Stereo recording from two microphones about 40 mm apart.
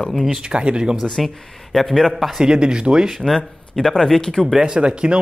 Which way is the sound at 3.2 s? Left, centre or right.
Centre.